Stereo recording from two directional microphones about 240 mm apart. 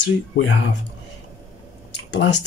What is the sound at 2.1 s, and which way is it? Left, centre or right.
Speech, left.